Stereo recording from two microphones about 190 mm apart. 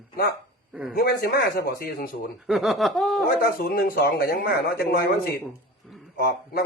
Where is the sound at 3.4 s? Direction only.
55° left (ahead or behind).